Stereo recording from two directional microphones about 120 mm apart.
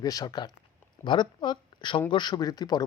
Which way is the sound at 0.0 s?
30° left (ahead or behind).